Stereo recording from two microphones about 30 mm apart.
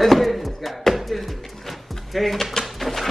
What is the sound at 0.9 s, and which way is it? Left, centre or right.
Music, centre.